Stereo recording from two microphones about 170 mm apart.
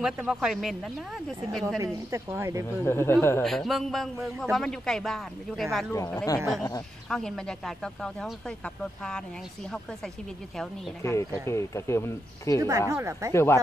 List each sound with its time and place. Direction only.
0.0 s a man's voice: 5° right (ahead or behind)
2.0 s speech: 15° right (ahead or behind)
2.8 s speech: 15° left (ahead or behind)
3.4 s a man's voice: centre (ahead or behind)
7.1 s a man's voice: 5° left (ahead or behind)
11.0 s speech: 15° left (ahead or behind)
12.5 s speech: 20° right (ahead or behind)
13.3 s speech: 15° left (ahead or behind)